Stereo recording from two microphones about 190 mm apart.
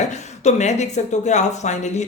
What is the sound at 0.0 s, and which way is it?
Speech, 40° left (ahead or behind).